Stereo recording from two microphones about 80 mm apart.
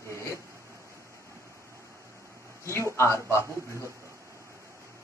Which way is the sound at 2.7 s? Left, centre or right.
Left.